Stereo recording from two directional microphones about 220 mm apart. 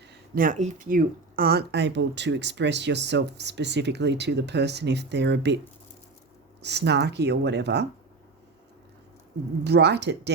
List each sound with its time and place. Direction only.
0.3 s speech: 35° right (ahead or behind); by 5.5 s 50° right (ahead or behind)
6.6 s speech: 50° right (ahead or behind)
9.6 s speech: 50° right (ahead or behind)